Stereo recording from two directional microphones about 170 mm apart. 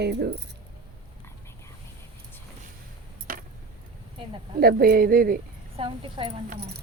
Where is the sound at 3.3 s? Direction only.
55° right (ahead or behind).